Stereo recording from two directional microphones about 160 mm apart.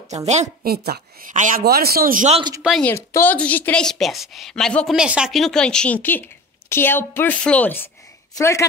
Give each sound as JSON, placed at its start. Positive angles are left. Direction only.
{"t": 0.1, "sound": "a woman's voice", "side_deg": -45}
{"t": 0.7, "sound": "speech", "side_deg": -75}
{"t": 1.3, "sound": "a woman's voice", "side_deg": -50}
{"t": 1.6, "sound": "speech", "side_deg": -75}
{"t": 2.8, "sound": "a woman's voice", "side_deg": 15}